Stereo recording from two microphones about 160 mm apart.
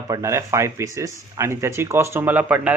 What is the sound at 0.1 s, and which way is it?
Speech, 20° right (ahead or behind).